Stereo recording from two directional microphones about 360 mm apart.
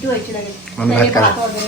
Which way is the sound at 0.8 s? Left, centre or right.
Centre.